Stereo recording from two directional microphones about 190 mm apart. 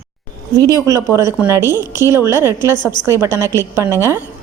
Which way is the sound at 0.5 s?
20° right (ahead or behind).